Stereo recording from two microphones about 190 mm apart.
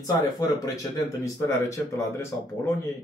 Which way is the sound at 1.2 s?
15° left (ahead or behind).